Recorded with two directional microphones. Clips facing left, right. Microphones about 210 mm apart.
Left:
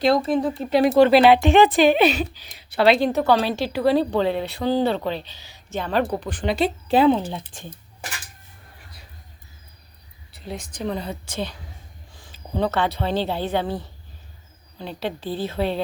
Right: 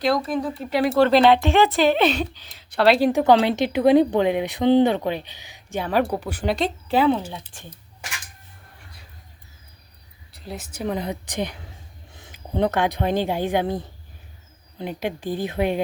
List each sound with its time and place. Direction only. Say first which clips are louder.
0.0 s speech: left 3 dB; 25° left (ahead or behind); by 3.1 s centre (ahead or behind)
3.1 s speech: right 3 dB; 15° right (ahead or behind)
6.8 s speech: left 2 dB; 20° left (ahead or behind)
10.3 s a woman's voice: left 1 dB; centre (ahead or behind)